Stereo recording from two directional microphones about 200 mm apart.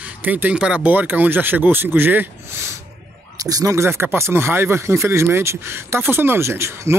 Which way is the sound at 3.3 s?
15° right (ahead or behind).